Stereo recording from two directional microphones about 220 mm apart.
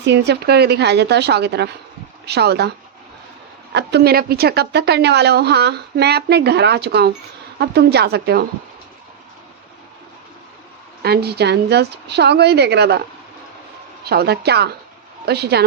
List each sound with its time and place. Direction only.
0.0 s a woman's voice: 50° right (ahead or behind)
11.0 s a woman's voice: 45° right (ahead or behind)
14.0 s a woman's voice: 45° right (ahead or behind)